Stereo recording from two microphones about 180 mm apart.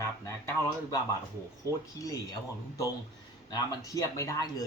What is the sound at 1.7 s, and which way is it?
Speech, 20° left (ahead or behind).